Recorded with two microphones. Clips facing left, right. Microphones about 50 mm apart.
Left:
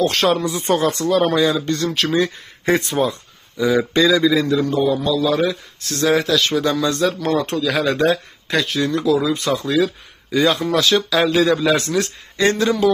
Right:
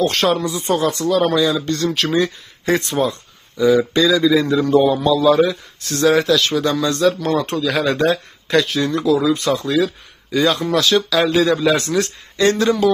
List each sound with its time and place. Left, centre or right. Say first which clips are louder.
0.0 s speech: even; centre
0.4 s speech: even; left
1.7 s speech: right 1 dB; centre
4.7 s a man's voice: right 4 dB; right
5.3 s speech: right 4 dB; centre
10.3 s speech: even; centre
10.6 s speech: right 1 dB; centre